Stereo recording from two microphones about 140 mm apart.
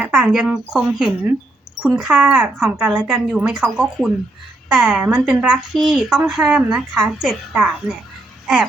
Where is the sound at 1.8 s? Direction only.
5° right (ahead or behind).